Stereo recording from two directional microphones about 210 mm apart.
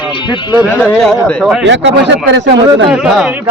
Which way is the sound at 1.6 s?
60° right (ahead or behind).